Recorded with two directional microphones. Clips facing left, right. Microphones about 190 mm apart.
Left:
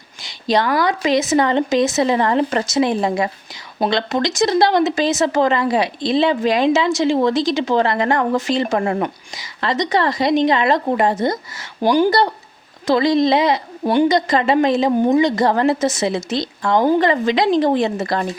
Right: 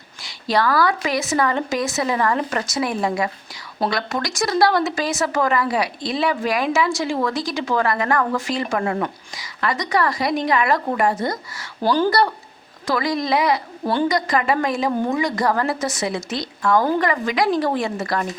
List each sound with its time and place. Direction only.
0.2 s a woman's voice: 20° left (ahead or behind)